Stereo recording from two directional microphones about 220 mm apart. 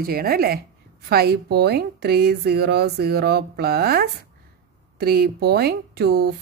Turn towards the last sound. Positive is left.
turn(degrees=-50)  # may be behind; listen again after turning